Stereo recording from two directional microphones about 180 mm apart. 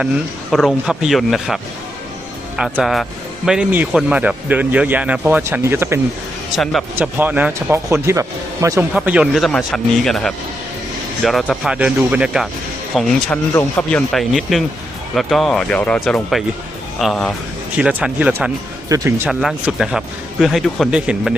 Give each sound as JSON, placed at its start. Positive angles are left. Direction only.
{"t": 0.5, "sound": "speech", "side_deg": 0}
{"t": 2.6, "sound": "speech", "side_deg": -5}
{"t": 6.6, "sound": "speech", "side_deg": 0}
{"t": 7.2, "sound": "speech", "side_deg": -10}
{"t": 8.9, "sound": "speech", "side_deg": -5}
{"t": 19.3, "sound": "speech", "side_deg": 0}